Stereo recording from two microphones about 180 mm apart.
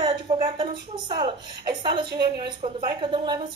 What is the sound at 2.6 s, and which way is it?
Speech, 30° right (ahead or behind).